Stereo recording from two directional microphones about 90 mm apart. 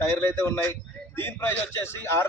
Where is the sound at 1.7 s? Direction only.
30° left (ahead or behind).